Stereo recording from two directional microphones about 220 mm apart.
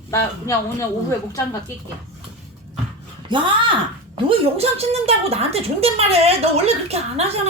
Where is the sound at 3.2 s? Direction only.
20° right (ahead or behind).